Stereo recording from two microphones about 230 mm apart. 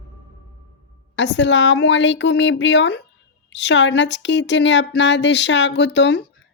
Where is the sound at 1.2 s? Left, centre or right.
Left.